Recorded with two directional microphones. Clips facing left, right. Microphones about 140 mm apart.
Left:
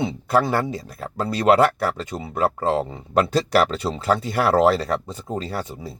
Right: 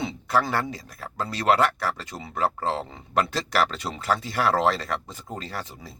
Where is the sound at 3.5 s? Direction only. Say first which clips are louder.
Left 4 dB; 30° left (ahead or behind).